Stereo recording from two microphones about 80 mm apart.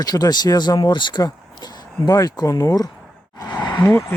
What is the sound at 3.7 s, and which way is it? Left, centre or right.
Speech, left.